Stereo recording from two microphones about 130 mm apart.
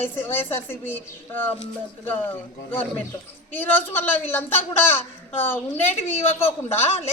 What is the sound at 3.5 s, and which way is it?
A woman's voice, 15° left (ahead or behind).